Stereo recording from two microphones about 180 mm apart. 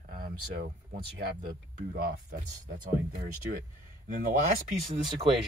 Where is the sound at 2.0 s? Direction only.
55° right (ahead or behind).